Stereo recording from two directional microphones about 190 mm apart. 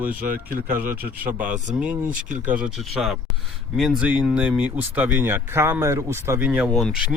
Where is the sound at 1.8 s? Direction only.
5° right (ahead or behind).